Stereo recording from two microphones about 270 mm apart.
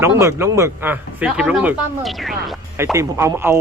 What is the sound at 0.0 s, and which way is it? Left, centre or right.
Speech, centre.